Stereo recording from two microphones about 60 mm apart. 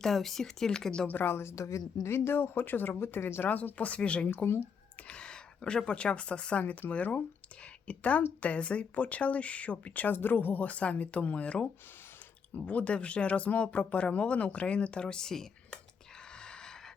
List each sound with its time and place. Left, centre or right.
0.0 s speech: centre
1.0 s a woman's voice: left
2.0 s a woman's voice: left
3.5 s speech: left; by 15.8 s centre
16.4 s a sound: centre